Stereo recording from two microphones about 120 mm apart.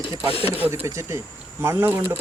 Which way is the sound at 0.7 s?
25° right (ahead or behind).